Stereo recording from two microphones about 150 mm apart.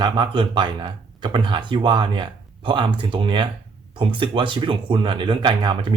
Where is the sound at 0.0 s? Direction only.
30° right (ahead or behind).